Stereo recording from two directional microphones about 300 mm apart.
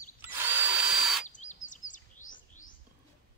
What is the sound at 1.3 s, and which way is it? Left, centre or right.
Bird vocalization, left.